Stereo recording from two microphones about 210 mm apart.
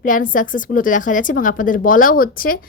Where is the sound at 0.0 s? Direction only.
40° left (ahead or behind).